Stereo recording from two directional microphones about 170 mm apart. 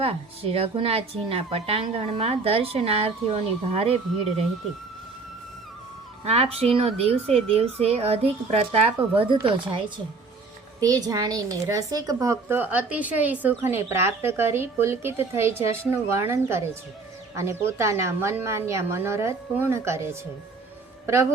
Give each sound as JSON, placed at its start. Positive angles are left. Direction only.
{"t": 0.0, "sound": "speech", "side_deg": -35}
{"t": 6.2, "sound": "a woman's voice", "side_deg": -35}